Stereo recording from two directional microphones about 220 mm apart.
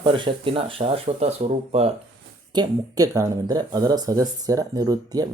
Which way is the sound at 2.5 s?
15° right (ahead or behind).